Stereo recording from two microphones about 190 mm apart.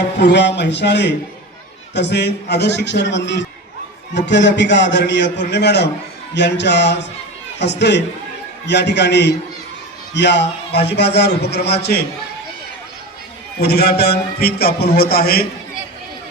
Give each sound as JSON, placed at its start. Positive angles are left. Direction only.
{"t": 0.2, "sound": "a man's voice", "side_deg": 65}
{"t": 13.6, "sound": "a man's voice", "side_deg": 55}